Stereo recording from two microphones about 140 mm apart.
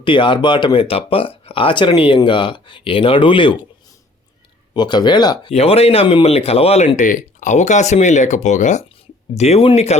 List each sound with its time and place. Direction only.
0.0 s speech: 35° left (ahead or behind)
4.7 s speech: 30° left (ahead or behind)
5.5 s speech: 45° left (ahead or behind)